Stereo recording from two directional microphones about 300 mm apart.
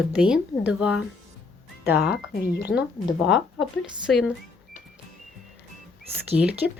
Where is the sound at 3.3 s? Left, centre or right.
Centre.